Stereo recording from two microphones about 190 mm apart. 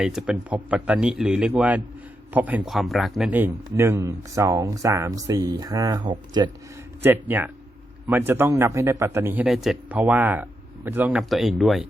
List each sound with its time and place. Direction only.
0.0 s a man's voice: 5° right (ahead or behind); by 6.5 s 25° right (ahead or behind)
7.0 s a man's voice: 10° right (ahead or behind)